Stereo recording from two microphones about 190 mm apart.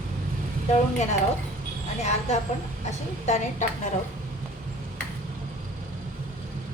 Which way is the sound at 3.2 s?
35° left (ahead or behind).